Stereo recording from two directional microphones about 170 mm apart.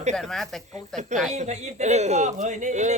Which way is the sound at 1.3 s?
40° right (ahead or behind).